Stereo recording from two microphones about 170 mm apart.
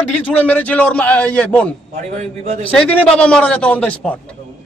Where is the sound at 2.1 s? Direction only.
45° right (ahead or behind).